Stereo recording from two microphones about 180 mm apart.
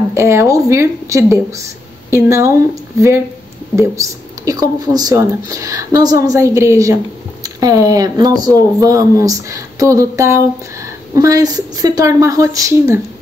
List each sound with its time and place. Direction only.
0.1 s speech: 15° right (ahead or behind)